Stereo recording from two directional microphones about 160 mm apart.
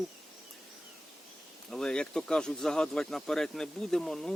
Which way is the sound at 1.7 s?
5° left (ahead or behind).